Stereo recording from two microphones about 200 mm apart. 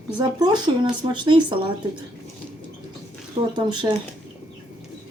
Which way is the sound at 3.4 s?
30° right (ahead or behind).